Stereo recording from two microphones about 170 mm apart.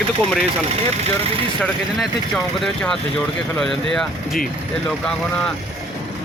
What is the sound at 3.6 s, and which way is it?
Speech, centre (ahead or behind).